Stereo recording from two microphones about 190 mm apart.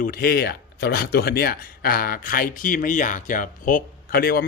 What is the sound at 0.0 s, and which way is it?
Speech, 50° left (ahead or behind).